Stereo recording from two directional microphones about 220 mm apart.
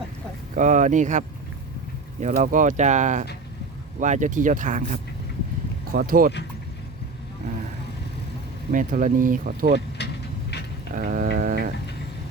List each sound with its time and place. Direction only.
0.5 s speech: 35° right (ahead or behind)
2.2 s speech: 35° right (ahead or behind)
8.7 s speech: 35° right (ahead or behind)
10.9 s dog: 40° right (ahead or behind)